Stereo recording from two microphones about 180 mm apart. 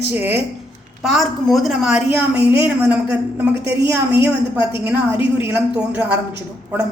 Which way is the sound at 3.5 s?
65° right (ahead or behind).